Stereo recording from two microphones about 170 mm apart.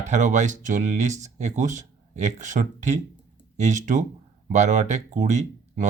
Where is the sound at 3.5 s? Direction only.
45° right (ahead or behind).